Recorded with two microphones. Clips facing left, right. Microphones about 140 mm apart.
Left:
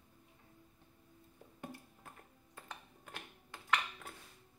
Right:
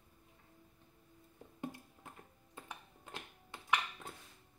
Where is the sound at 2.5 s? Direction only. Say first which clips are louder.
Right 1 dB; 20° right (ahead or behind).